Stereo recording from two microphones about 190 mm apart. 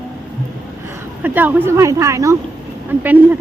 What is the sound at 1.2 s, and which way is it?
A woman's voice, 10° right (ahead or behind).